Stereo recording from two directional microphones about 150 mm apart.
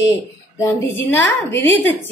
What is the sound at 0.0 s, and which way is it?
A woman's voice, 20° left (ahead or behind).